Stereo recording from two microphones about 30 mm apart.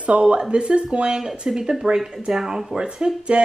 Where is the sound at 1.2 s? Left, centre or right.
Centre.